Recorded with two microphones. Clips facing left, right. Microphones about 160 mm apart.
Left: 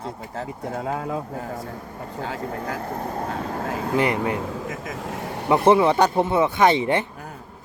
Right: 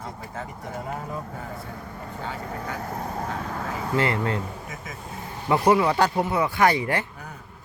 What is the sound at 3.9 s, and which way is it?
Speech, 15° left (ahead or behind).